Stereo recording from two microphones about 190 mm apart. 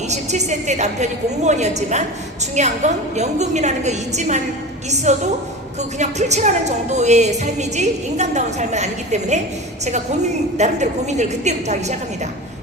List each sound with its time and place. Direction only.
0.1 s a woman's voice: 35° right (ahead or behind)